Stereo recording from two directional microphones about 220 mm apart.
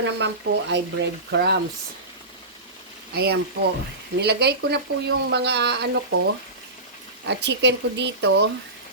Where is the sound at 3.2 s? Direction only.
45° right (ahead or behind).